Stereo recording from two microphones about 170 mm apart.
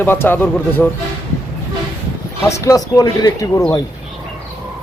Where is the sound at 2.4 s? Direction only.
15° left (ahead or behind).